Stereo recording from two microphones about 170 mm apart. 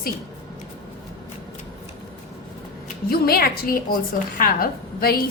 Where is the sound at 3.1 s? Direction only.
65° left (ahead or behind).